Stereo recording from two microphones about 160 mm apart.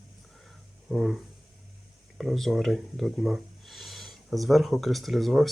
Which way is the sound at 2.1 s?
Centre (ahead or behind).